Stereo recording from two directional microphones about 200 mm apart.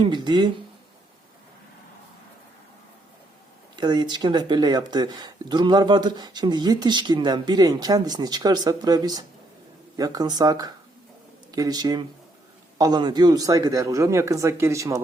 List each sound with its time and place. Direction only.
0.0 s speech: 20° right (ahead or behind)
3.8 s speech: 20° right (ahead or behind)